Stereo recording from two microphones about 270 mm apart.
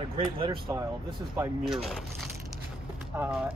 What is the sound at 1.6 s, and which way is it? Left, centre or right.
Speech, centre.